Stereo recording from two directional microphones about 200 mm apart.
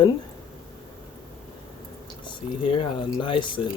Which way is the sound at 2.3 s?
25° left (ahead or behind).